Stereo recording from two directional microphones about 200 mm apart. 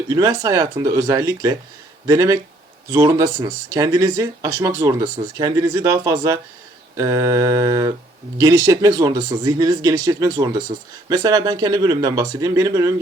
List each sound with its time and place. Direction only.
0.1 s speech: 20° right (ahead or behind)